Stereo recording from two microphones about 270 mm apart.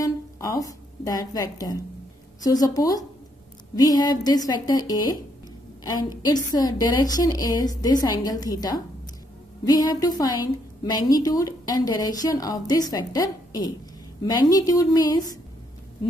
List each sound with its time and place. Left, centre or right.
0.0 s a woman's voice: centre